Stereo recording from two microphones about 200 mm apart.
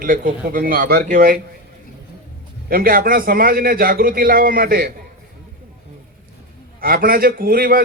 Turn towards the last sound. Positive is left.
turn(degrees=-45)  # may be behind; listen again after turning